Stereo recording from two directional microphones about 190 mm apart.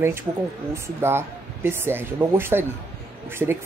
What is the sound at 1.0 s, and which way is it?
Speech, 10° right (ahead or behind).